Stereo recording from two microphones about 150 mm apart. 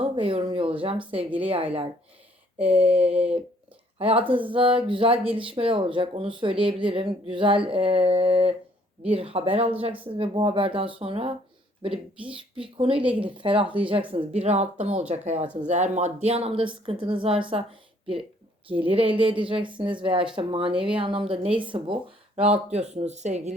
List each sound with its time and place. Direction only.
0.0 s a woman's voice: 40° right (ahead or behind)
18.8 s speech: 35° right (ahead or behind)
22.4 s speech: 45° right (ahead or behind)